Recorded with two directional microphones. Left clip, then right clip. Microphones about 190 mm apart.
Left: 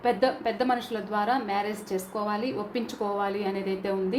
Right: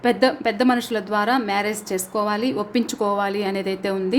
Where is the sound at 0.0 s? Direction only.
50° right (ahead or behind).